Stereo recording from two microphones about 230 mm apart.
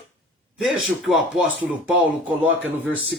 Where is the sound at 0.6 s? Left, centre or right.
Centre.